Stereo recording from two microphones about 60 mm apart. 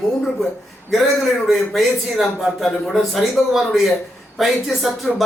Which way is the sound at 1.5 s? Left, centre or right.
Centre.